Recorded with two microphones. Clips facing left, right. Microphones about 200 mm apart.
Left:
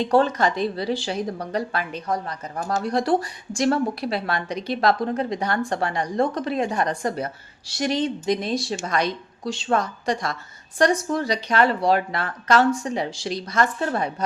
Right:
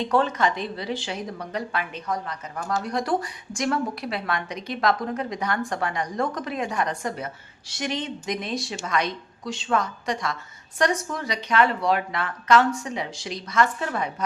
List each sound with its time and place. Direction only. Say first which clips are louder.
0.0 s a woman's voice: left 3 dB; 35° left (ahead or behind)